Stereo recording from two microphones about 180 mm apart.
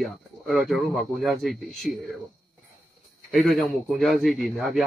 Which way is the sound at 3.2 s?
Centre (ahead or behind).